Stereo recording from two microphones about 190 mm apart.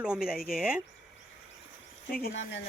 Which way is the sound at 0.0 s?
5° right (ahead or behind).